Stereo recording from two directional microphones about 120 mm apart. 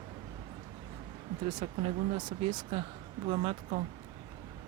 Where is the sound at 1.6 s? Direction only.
55° right (ahead or behind).